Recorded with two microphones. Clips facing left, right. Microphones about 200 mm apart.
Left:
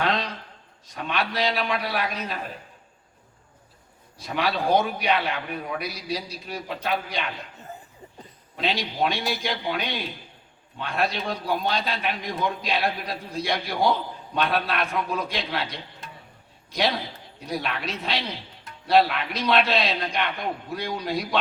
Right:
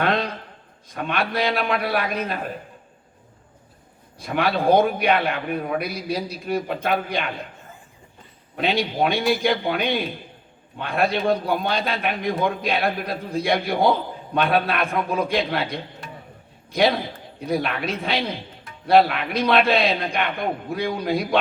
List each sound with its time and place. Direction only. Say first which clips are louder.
0.0 s a sound: right 4 dB; 55° right (ahead or behind)
0.9 s a man's voice: right 3 dB; 55° right (ahead or behind)
4.2 s a man's voice: right 4 dB; 55° right (ahead or behind)
8.5 s a man's voice: right 5 dB; 55° right (ahead or behind)